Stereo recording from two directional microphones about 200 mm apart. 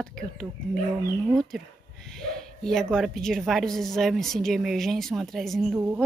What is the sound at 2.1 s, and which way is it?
Speech, 5° left (ahead or behind).